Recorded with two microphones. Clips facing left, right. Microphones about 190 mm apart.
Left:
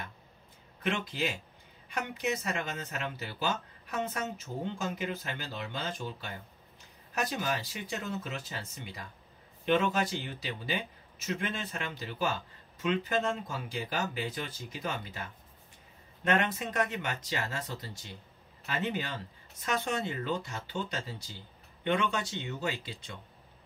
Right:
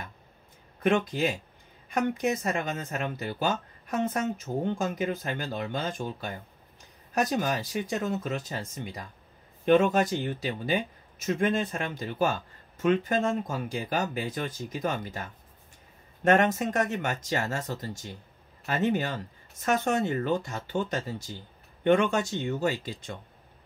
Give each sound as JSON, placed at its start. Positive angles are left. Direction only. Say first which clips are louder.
{"t": 0.8, "sound": "speech", "louder": "right 8 dB", "side_deg": -50}
{"t": 16.3, "sound": "speech", "louder": "right 7 dB", "side_deg": -45}